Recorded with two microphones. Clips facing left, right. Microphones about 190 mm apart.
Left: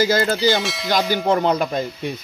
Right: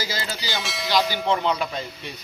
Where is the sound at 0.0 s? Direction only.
55° left (ahead or behind).